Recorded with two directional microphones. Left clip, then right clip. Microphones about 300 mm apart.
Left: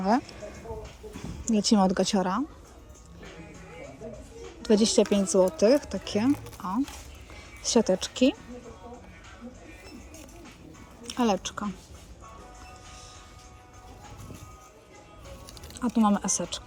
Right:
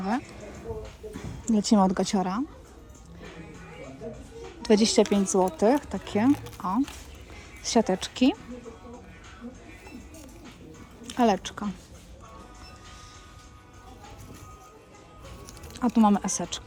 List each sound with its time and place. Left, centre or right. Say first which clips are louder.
1.5 s speech: right 1 dB; centre
4.6 s speech: right 1 dB; centre
5.5 s speech: left 1 dB; centre
5.8 s speech: right 2 dB; centre
11.0 s speech: right 3 dB; centre
15.7 s speech: right 3 dB; centre